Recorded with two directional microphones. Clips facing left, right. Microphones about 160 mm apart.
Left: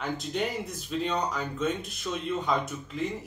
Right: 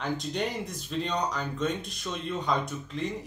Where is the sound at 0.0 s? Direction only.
Centre (ahead or behind).